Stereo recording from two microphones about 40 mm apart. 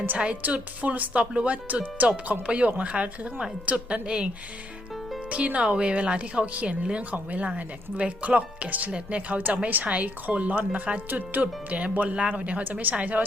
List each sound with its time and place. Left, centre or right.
0.4 s speech: right
1.6 s a woman's voice: right
5.3 s speech: right
12.8 s speech: right